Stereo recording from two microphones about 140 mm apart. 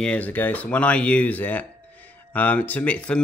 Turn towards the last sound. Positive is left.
turn(degrees=10)  # may be behind; listen again after turning